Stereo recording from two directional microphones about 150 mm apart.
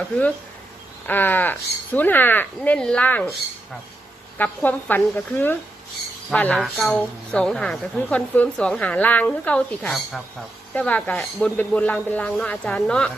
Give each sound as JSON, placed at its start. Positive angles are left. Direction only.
{"t": 1.0, "sound": "a woman's voice", "side_deg": 10}
{"t": 4.4, "sound": "a woman's voice", "side_deg": 10}